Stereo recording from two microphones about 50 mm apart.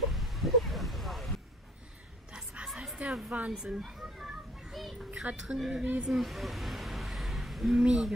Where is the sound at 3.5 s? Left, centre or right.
Centre.